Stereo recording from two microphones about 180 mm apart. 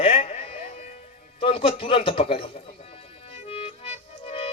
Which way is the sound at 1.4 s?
30° left (ahead or behind).